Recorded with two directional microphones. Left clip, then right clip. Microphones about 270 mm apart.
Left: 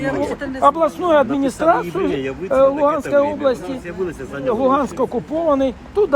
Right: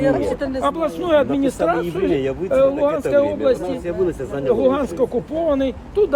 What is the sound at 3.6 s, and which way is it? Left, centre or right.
Speech, right.